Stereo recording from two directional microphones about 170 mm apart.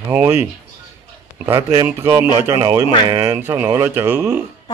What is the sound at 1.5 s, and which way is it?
Speech, 15° right (ahead or behind).